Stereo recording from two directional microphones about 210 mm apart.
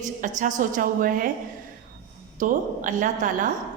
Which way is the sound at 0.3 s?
35° right (ahead or behind).